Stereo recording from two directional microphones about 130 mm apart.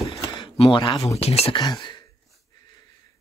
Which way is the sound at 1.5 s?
35° left (ahead or behind).